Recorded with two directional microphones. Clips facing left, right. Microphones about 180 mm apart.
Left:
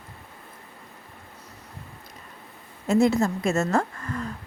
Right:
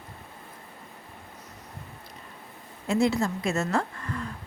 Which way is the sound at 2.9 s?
45° left (ahead or behind).